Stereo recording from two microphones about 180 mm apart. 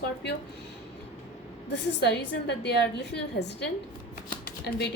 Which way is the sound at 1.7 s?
75° left (ahead or behind).